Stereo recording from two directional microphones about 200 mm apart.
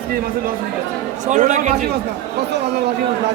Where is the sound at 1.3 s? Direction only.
35° right (ahead or behind).